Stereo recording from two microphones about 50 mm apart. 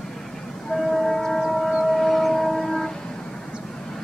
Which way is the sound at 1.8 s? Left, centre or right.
Centre.